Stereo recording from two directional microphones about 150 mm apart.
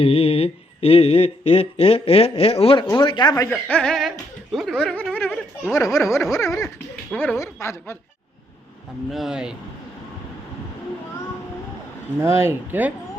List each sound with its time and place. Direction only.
0.0 s speech: 40° left (ahead or behind); by 3.6 s 20° left (ahead or behind)
3.7 s speech: 5° left (ahead or behind)
5.7 s speech: 20° left (ahead or behind)
9.1 s speech: 5° right (ahead or behind)
12.2 s speech: 15° right (ahead or behind)